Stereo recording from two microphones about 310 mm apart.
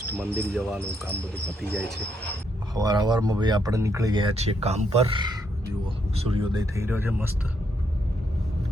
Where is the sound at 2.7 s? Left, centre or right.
Centre.